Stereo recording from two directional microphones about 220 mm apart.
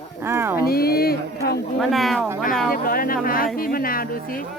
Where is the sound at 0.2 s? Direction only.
10° right (ahead or behind).